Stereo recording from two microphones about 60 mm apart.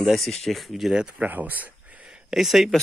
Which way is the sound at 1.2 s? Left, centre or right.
Right.